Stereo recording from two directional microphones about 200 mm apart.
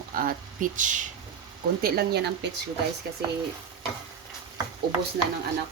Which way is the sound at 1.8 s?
50° right (ahead or behind).